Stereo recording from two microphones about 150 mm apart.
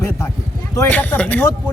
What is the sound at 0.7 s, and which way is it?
Speech, 15° left (ahead or behind).